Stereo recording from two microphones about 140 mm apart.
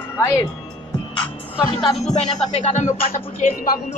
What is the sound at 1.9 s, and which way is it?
Music, 55° left (ahead or behind).